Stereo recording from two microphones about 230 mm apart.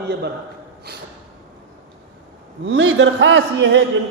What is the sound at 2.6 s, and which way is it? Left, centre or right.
A man's voice, right.